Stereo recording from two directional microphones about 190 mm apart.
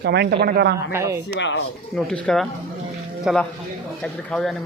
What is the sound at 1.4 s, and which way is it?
Speech, 70° left (ahead or behind).